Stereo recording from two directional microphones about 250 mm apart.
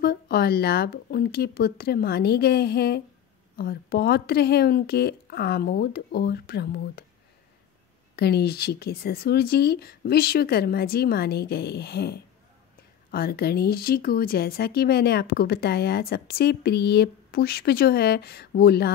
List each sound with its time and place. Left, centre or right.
0.0 s speech: left
8.2 s speech: left